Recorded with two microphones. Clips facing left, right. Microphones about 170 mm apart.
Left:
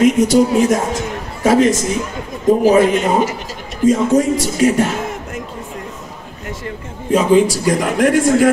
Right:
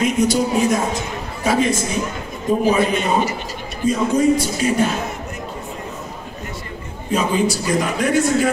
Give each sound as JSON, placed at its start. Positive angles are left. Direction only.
{"t": 0.0, "sound": "a man's voice", "side_deg": 90}
{"t": 7.1, "sound": "a man's voice", "side_deg": 90}